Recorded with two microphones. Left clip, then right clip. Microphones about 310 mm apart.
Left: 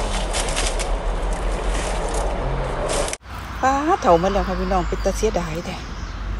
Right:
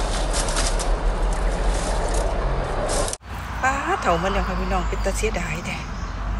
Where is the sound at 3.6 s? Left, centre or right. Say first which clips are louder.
Left 4 dB; centre.